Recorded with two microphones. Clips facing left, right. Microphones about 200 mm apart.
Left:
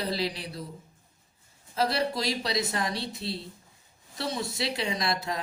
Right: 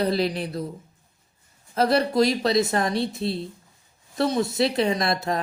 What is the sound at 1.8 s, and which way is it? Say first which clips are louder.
Speech: right 8 dB; 50° right (ahead or behind).